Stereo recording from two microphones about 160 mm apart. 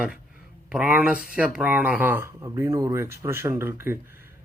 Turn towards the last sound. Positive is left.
turn(degrees=-15)  # may be behind; listen again after turning